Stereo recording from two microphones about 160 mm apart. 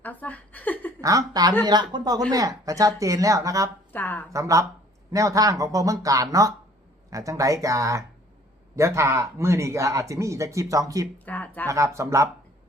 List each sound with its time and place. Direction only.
0.0 s a sound: 10° left (ahead or behind)
1.0 s speech: 20° right (ahead or behind)
3.9 s speech: 10° left (ahead or behind)
4.3 s speech: 20° right (ahead or behind)
11.3 s speech: 10° left (ahead or behind)
11.7 s speech: 20° right (ahead or behind)